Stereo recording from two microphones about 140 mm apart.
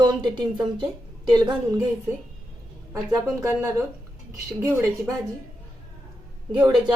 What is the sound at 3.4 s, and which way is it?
A woman's voice, 20° right (ahead or behind).